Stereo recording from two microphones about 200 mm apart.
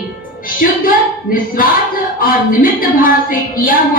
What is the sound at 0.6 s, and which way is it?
Speech, 45° left (ahead or behind).